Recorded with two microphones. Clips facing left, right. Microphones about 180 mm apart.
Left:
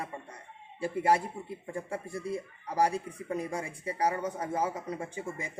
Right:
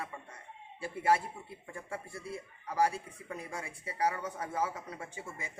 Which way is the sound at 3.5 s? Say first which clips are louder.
Left 4 dB; 40° left (ahead or behind).